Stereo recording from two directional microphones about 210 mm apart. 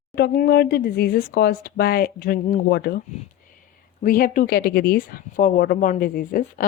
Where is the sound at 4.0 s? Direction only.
40° left (ahead or behind).